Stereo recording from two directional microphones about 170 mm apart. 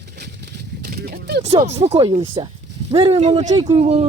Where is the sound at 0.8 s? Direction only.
60° right (ahead or behind).